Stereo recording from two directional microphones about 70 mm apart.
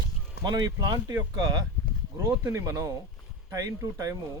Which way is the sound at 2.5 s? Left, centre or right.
Right.